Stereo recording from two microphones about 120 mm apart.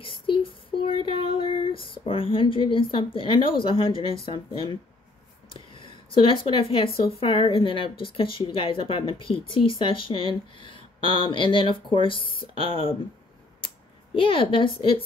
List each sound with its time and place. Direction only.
0.0 s child singing: 45° left (ahead or behind)
4.3 s speech: 45° left (ahead or behind)
14.1 s speech: 45° left (ahead or behind)